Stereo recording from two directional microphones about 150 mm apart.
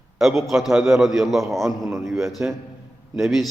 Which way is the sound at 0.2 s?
Centre (ahead or behind).